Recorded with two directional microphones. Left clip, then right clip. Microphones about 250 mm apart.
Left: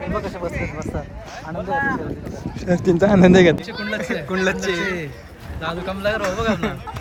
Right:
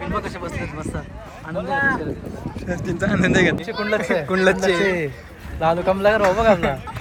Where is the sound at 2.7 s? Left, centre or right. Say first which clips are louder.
Left 7 dB; left.